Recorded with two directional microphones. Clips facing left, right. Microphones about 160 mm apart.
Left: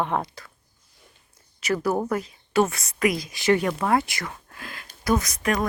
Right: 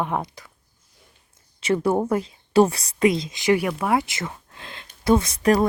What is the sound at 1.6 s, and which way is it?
Speech, 25° right (ahead or behind).